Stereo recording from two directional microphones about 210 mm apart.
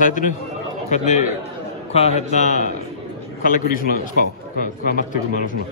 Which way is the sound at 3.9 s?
50° right (ahead or behind).